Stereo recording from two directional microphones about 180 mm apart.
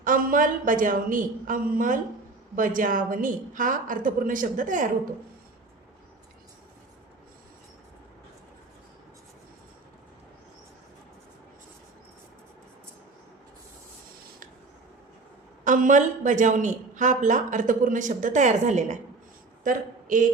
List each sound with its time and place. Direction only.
0.0 s speech: 50° right (ahead or behind)
15.6 s a woman's voice: 45° right (ahead or behind)